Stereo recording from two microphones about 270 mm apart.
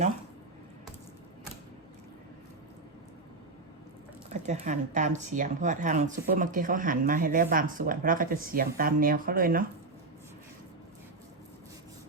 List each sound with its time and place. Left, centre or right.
4.3 s speech: right